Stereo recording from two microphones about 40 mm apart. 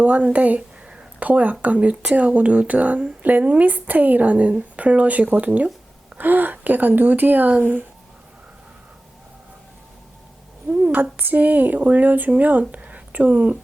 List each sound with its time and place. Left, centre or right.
0.0 s speech: right
6.1 s speech: right
10.7 s a sound: right
11.2 s speech: right